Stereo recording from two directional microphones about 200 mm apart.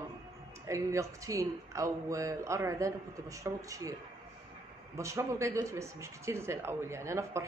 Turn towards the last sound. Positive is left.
turn(degrees=-15)  # may be behind; listen again after turning